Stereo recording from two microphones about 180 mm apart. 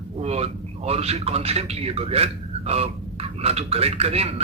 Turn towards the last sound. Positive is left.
turn(degrees=-35)  # may be behind; listen again after turning